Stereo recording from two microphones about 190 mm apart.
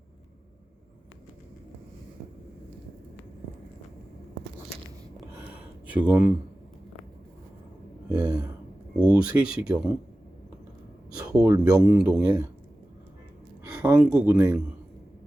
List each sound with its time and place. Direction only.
5.9 s speech: 5° right (ahead or behind)
8.1 s speech: 10° right (ahead or behind)
11.2 s speech: 20° right (ahead or behind)
13.7 s speech: 10° right (ahead or behind)